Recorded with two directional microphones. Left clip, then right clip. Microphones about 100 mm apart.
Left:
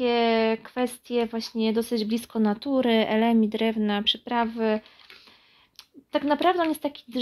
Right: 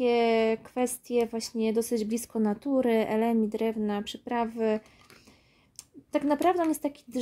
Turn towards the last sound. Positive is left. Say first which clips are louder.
# left 2 dB
turn(degrees=-40)  # may be behind; listen again after turning